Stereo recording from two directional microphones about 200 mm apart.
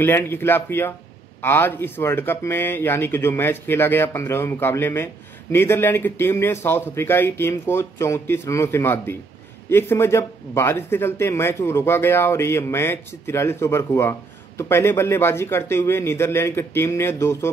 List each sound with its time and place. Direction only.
0.0 s speech: 10° left (ahead or behind)